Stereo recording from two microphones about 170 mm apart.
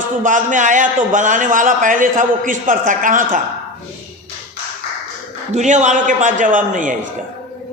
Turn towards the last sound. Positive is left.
turn(degrees=-50)  # may be behind; listen again after turning